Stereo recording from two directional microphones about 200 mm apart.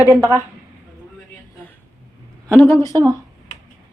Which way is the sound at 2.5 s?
15° left (ahead or behind).